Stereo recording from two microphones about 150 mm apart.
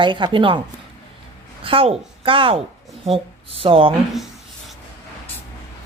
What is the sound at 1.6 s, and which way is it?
A woman's voice, 40° right (ahead or behind).